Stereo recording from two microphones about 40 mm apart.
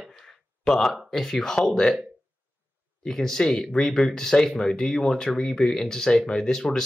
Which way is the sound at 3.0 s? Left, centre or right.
Centre.